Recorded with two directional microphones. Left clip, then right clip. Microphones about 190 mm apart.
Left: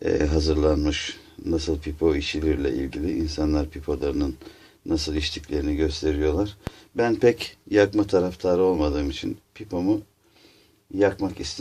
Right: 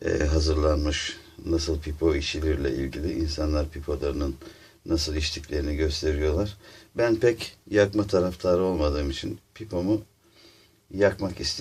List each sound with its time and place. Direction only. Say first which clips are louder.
0.0 s speech: left 3 dB; 30° left (ahead or behind)
10.9 s speech: left 1 dB; 25° left (ahead or behind)